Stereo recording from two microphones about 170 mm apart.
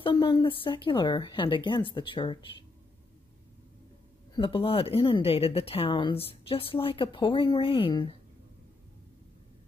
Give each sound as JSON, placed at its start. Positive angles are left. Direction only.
{"t": 0.0, "sound": "speech", "side_deg": 30}
{"t": 4.4, "sound": "speech", "side_deg": 30}